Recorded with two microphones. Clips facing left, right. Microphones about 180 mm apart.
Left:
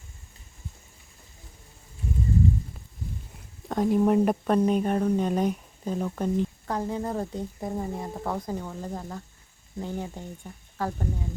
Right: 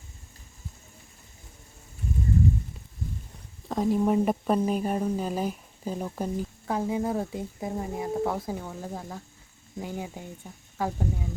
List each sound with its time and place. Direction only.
3.7 s speech: centre (ahead or behind)